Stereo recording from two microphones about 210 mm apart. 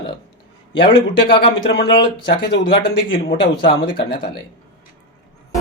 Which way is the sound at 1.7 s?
55° left (ahead or behind).